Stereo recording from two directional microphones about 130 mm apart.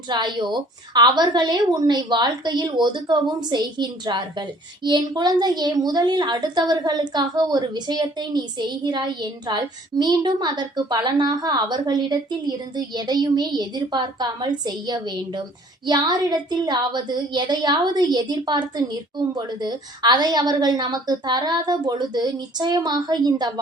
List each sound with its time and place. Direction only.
0.1 s a woman's voice: 35° right (ahead or behind)